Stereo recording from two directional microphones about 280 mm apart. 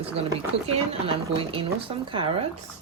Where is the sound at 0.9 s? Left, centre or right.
Centre.